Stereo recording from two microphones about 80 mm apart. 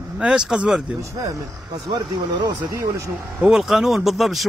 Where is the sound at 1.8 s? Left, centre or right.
Right.